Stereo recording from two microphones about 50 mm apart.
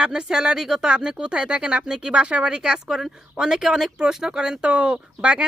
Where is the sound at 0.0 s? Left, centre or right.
Centre.